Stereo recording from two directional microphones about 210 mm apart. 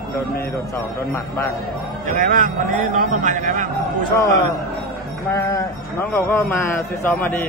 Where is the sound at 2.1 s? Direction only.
40° right (ahead or behind).